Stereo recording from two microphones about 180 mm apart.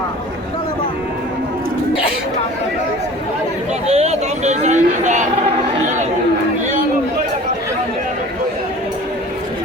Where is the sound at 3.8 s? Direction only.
35° right (ahead or behind).